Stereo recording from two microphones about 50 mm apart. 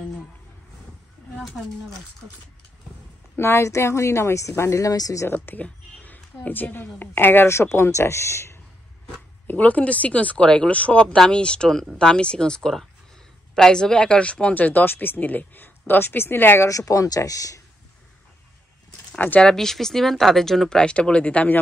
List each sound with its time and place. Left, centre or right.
3.3 s speech: left
5.3 s a woman's voice: left
5.6 s a woman's voice: left
7.4 s speech: left
9.5 s speech: left
11.1 s a woman's voice: centre; by 16.5 s left
16.5 s speech: left
19.1 s speech: left
19.4 s speech: centre
20.8 s speech: left